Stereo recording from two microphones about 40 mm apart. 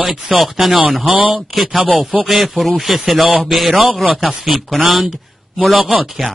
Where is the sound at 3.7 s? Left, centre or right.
Centre.